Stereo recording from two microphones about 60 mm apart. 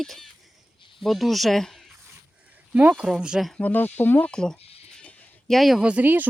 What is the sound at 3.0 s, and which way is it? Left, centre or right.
Speech, centre.